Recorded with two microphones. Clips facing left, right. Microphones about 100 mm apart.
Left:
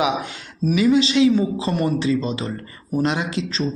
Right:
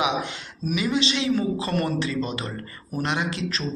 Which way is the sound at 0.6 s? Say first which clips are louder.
Left 8 dB; 30° left (ahead or behind).